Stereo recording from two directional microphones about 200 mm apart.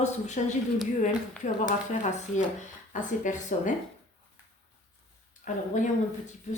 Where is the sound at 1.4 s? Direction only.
40° left (ahead or behind).